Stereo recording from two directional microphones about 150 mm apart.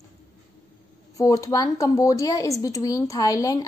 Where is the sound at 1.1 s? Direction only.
25° left (ahead or behind).